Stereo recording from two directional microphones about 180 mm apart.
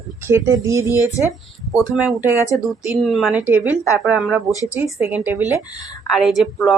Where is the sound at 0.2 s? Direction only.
15° right (ahead or behind).